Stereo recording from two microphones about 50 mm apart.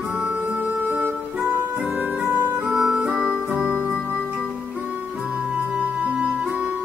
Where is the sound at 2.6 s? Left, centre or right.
Centre.